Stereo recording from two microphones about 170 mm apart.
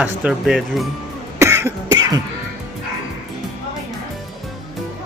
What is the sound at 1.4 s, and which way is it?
Cough, 15° right (ahead or behind).